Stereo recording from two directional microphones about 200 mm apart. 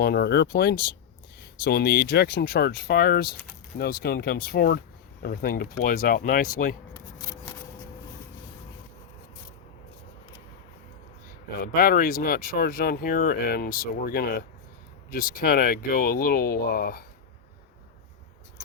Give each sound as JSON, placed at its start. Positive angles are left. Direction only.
{"t": 0.0, "sound": "speech", "side_deg": 50}
{"t": 11.6, "sound": "speech", "side_deg": 45}